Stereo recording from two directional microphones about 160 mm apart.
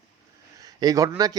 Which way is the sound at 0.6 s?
25° right (ahead or behind).